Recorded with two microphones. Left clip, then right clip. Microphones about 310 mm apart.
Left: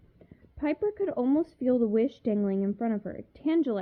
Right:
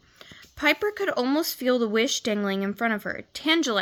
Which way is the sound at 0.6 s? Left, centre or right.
Centre.